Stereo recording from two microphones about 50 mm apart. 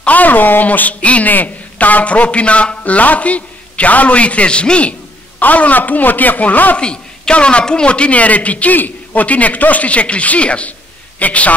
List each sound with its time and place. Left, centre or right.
0.0 s a man's voice: left
6.8 s a man's voice: centre